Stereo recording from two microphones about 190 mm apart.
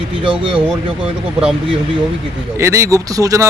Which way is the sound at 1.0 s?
5° right (ahead or behind).